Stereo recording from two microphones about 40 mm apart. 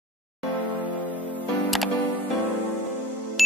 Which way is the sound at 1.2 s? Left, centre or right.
Left.